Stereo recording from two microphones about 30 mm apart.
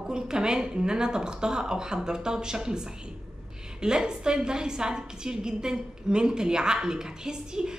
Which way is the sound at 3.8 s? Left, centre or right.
Right.